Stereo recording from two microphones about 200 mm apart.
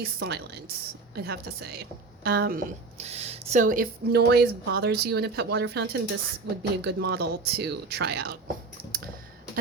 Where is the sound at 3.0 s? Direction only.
30° right (ahead or behind); by 8.4 s 55° right (ahead or behind).